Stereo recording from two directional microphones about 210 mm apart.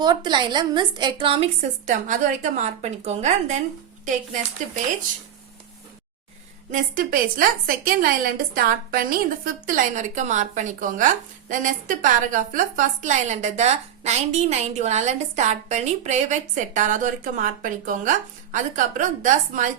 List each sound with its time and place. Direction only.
0.0 s a woman's voice: 20° right (ahead or behind)
1.9 s a woman's voice: 35° right (ahead or behind)
6.7 s a woman's voice: 40° right (ahead or behind)